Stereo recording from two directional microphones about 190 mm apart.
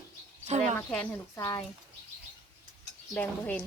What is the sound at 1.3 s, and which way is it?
Speech, 15° left (ahead or behind).